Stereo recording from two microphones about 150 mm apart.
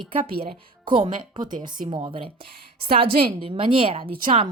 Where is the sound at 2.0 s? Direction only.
35° right (ahead or behind).